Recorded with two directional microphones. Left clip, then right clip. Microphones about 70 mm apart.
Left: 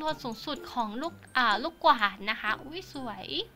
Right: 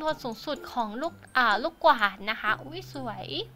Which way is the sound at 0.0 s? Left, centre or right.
Right.